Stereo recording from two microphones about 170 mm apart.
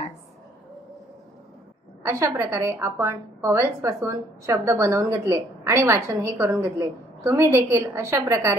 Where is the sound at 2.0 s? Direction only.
15° right (ahead or behind).